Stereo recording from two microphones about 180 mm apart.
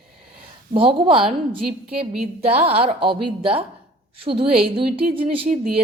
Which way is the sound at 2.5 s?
35° right (ahead or behind).